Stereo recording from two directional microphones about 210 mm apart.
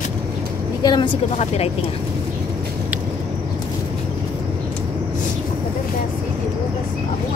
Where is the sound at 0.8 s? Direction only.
25° left (ahead or behind).